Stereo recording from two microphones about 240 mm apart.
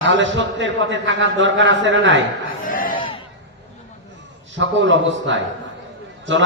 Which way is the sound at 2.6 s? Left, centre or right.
Left.